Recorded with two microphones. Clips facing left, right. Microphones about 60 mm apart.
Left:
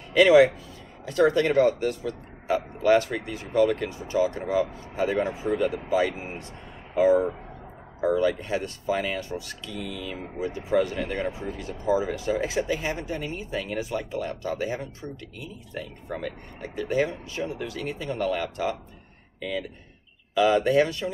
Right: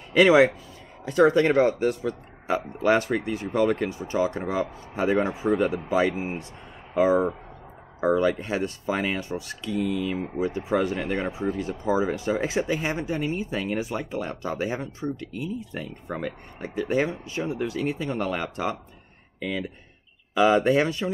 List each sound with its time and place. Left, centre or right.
0.1 s a man's voice: right
20.3 s speech: right